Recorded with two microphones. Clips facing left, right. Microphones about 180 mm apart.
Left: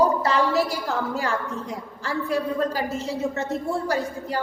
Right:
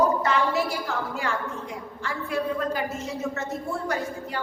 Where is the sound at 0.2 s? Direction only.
35° left (ahead or behind).